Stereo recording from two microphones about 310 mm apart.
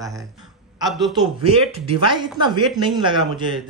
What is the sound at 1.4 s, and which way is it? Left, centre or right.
Speech, centre.